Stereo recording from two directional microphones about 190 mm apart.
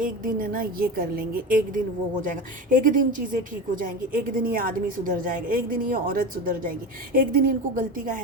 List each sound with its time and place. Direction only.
0.0 s a woman's voice: 50° right (ahead or behind)